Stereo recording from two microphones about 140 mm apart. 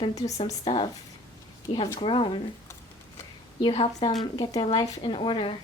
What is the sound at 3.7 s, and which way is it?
A woman's voice, 45° left (ahead or behind).